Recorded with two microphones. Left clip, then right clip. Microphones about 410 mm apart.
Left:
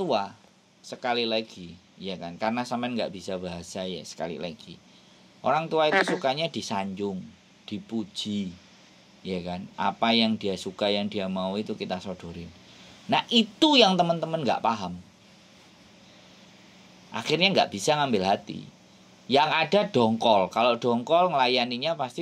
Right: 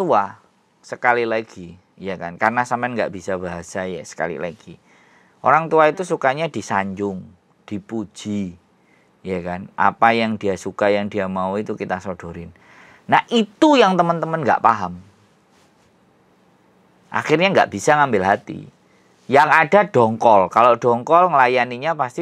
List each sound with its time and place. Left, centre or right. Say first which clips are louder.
0.8 s speech: right 10 dB; right
17.1 s speech: right 8 dB; right